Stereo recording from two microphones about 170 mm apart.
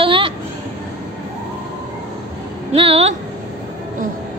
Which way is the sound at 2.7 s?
35° right (ahead or behind).